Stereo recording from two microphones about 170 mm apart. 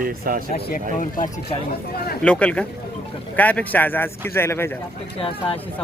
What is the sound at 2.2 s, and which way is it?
Speech, 5° left (ahead or behind).